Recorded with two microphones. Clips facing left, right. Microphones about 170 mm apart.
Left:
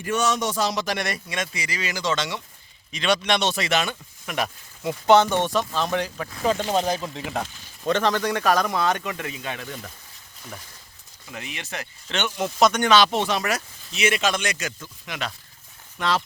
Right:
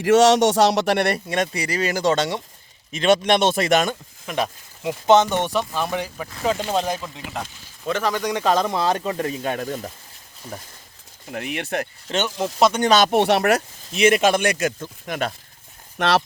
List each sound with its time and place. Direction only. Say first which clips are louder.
0.0 s a man's voice: right 10 dB; 85° right; by 1.6 s 60° right (ahead or behind)
1.7 s speech: right 6 dB; 45° right (ahead or behind)
4.4 s speech: right 2 dB; 15° right (ahead or behind)
6.7 s speech: even; centre (ahead or behind); by 9.9 s 40° right (ahead or behind)
11.3 s speech: right 8 dB; 55° right (ahead or behind)
12.0 s speech: even; 40° right (ahead or behind)
13.0 s speech: right 5 dB; 55° right (ahead or behind)
16.0 s a man's voice: right 5 dB; 75° right (ahead or behind)